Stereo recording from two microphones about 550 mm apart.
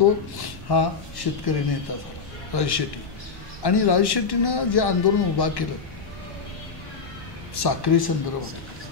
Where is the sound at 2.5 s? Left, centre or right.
Left.